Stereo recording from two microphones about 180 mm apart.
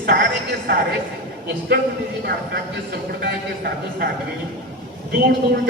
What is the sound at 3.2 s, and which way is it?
Speech, 60° right (ahead or behind).